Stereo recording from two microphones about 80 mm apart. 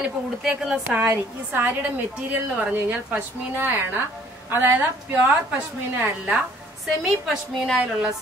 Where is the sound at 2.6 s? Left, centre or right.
Right.